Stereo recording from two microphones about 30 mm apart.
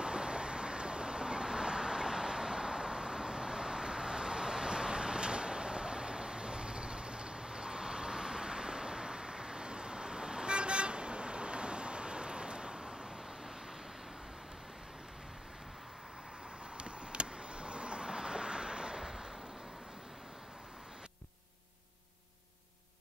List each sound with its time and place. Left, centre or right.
0.0 s vehicle: right
16.7 s vehicle: right